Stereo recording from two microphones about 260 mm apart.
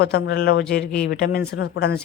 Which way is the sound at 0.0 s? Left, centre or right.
Left.